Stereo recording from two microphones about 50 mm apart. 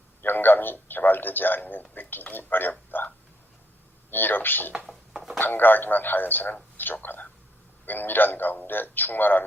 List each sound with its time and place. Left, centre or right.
0.2 s a man's voice: left
4.1 s a man's voice: left
5.1 s a sound: centre
5.4 s a man's voice: left